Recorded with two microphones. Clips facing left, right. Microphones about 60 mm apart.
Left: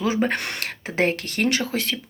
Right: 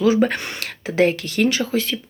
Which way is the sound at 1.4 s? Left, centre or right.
Left.